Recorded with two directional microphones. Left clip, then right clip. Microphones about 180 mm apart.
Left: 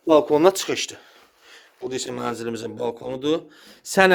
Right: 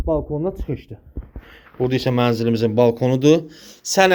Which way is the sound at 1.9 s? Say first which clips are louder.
Right 7 dB; 20° left (ahead or behind).